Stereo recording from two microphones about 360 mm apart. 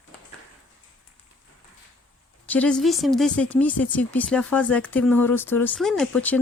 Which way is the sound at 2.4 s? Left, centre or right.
Centre.